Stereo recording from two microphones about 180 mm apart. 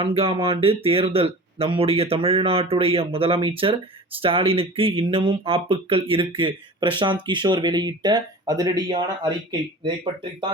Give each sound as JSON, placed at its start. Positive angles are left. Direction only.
{"t": 0.0, "sound": "speech", "side_deg": -30}